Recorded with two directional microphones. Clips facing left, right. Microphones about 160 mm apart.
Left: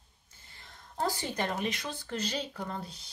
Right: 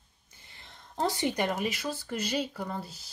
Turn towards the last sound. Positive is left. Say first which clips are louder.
# right 2 dB
turn(degrees=-5)  # may be behind; listen again after turning